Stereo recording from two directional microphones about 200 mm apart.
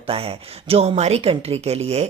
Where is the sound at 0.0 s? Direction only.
30° right (ahead or behind).